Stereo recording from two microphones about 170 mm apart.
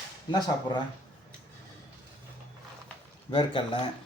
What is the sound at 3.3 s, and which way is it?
Speech, 30° left (ahead or behind).